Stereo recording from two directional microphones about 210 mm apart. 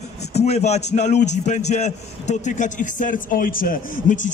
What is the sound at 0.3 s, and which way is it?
A man's voice, 30° left (ahead or behind).